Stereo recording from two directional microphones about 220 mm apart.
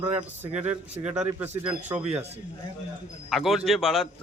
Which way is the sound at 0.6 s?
30° right (ahead or behind).